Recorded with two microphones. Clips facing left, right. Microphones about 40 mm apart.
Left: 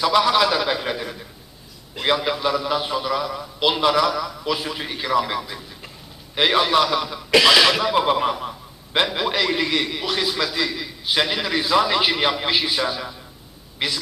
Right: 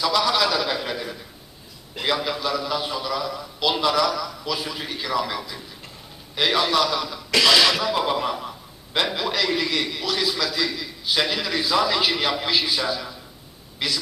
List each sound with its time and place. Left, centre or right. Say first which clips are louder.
0.0 s a man's voice: left 4 dB; centre
2.4 s a man's voice: left 3 dB; centre